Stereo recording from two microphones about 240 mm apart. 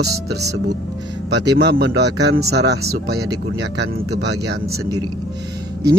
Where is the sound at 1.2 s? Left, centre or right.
Right.